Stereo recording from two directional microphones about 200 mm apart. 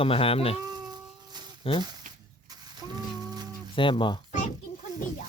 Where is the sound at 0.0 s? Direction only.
30° left (ahead or behind).